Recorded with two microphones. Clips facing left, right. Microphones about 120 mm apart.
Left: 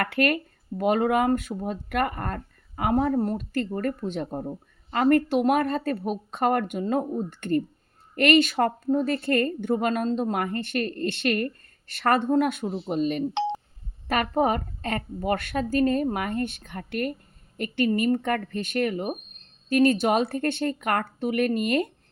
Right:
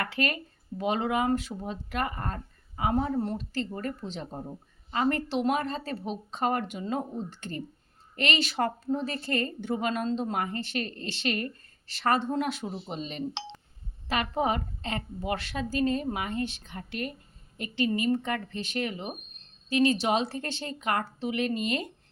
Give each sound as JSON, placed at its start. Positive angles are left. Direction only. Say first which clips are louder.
{"t": 0.0, "sound": "a woman's voice", "louder": "left 6 dB", "side_deg": 55}